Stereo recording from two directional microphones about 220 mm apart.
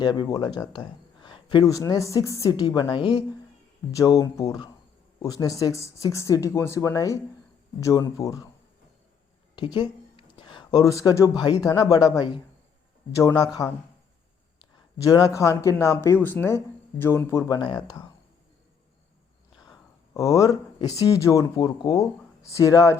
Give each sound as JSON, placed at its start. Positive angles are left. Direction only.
{"t": 0.0, "sound": "a man's voice", "side_deg": 20}
{"t": 9.6, "sound": "a man's voice", "side_deg": 20}
{"t": 20.1, "sound": "a man's voice", "side_deg": 15}